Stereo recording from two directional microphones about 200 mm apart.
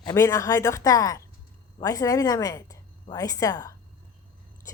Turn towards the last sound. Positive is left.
turn(degrees=20)  # may be behind; listen again after turning